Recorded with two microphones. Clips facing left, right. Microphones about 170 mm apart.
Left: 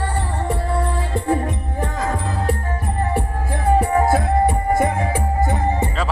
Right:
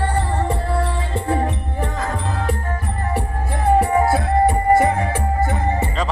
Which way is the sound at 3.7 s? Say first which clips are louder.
Even; 5° right (ahead or behind).